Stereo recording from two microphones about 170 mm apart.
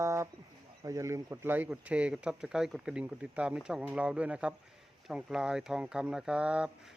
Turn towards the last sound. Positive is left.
turn(degrees=-5)  # may be behind; listen again after turning